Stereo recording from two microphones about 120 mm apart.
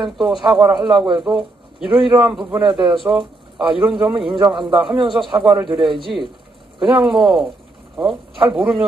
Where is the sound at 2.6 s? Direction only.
40° right (ahead or behind).